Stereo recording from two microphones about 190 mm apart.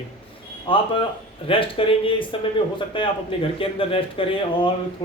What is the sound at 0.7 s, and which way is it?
Speech, 25° left (ahead or behind).